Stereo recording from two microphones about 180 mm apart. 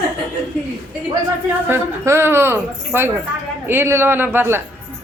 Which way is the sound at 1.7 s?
15° right (ahead or behind).